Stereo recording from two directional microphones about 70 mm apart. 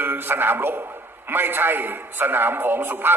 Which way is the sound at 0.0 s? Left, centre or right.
Right.